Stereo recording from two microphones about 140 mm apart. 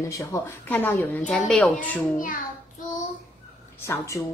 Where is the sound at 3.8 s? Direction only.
20° left (ahead or behind).